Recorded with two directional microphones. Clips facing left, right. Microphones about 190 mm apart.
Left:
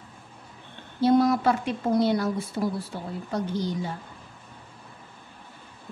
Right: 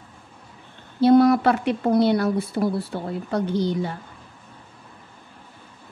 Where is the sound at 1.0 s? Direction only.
65° right (ahead or behind).